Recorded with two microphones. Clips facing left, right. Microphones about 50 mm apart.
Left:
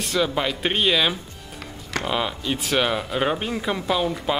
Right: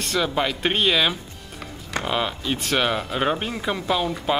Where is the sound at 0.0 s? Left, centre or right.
Centre.